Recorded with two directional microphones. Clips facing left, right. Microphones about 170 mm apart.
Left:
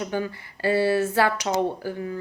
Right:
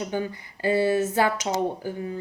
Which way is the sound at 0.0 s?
20° right (ahead or behind).